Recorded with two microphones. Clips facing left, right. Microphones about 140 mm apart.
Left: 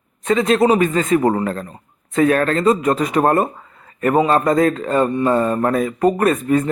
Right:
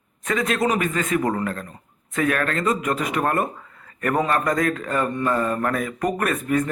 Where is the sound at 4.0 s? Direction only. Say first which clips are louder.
Left 6 dB; 25° left (ahead or behind).